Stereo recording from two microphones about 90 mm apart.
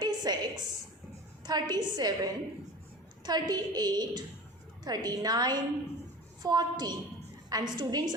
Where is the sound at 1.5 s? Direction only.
50° right (ahead or behind).